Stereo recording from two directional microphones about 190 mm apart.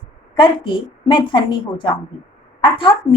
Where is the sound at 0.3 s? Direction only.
25° left (ahead or behind).